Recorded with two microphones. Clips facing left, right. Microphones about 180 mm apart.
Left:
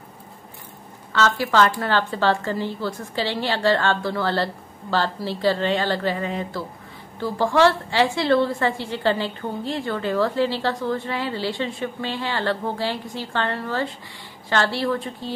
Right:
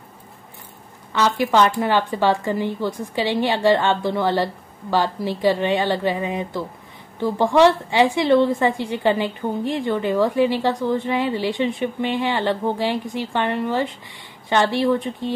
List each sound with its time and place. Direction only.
1.1 s a woman's voice: 15° right (ahead or behind)